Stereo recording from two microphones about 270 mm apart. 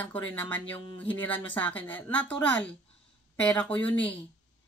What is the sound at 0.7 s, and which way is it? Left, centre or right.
Speech, centre.